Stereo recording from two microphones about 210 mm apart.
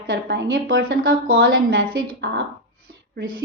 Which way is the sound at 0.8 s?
45° right (ahead or behind).